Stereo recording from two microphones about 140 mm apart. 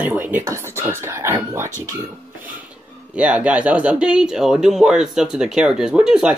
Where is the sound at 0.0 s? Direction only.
10° right (ahead or behind).